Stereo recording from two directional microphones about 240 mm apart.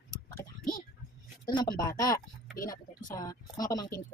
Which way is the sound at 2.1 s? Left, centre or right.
Left.